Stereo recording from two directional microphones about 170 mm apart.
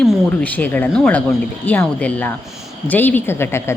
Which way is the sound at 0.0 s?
5° left (ahead or behind).